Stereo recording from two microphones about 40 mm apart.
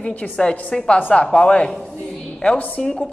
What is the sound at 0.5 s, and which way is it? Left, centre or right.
A woman's voice, left.